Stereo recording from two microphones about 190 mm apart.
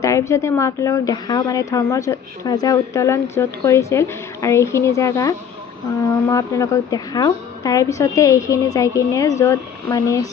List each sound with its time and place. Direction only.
0.0 s a woman's voice: 15° left (ahead or behind)